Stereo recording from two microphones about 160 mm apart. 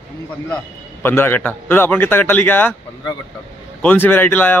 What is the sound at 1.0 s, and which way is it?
A man's voice, 15° left (ahead or behind).